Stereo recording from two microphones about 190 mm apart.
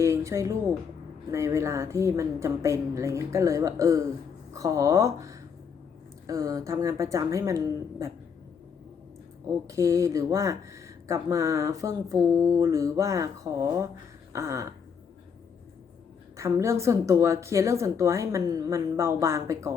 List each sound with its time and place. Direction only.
0.0 s a woman's voice: 15° right (ahead or behind)
9.6 s a woman's voice: 15° right (ahead or behind)
16.4 s a woman's voice: 15° right (ahead or behind)